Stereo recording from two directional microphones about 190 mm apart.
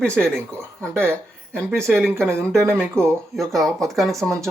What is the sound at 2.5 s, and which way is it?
Speech, 5° left (ahead or behind).